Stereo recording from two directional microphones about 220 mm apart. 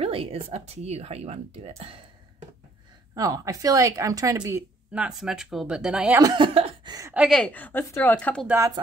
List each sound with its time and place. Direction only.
0.0 s speech: 25° right (ahead or behind)
3.2 s a woman's voice: 15° right (ahead or behind)
6.2 s chuckle: 20° right (ahead or behind)
7.2 s a woman's voice: 5° left (ahead or behind)
8.5 s a woman's voice: 10° right (ahead or behind)